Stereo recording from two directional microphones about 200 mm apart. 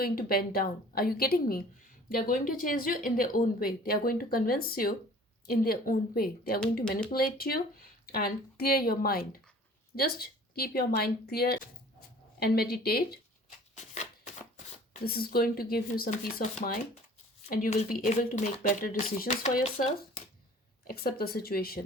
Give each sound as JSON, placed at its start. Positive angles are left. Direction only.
{"t": 0.0, "sound": "speech", "side_deg": 45}
{"t": 13.7, "sound": "shuffling cards", "side_deg": 35}
{"t": 15.0, "sound": "speech", "side_deg": 50}
{"t": 20.8, "sound": "speech", "side_deg": 50}